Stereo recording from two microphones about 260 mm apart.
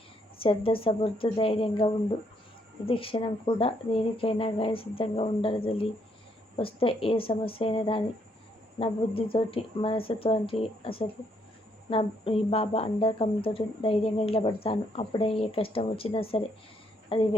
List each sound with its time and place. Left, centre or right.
0.3 s speech: left